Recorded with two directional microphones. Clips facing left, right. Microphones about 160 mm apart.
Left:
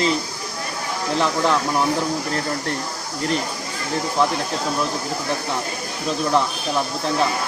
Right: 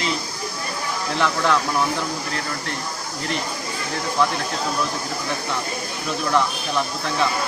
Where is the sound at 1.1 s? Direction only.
35° left (ahead or behind).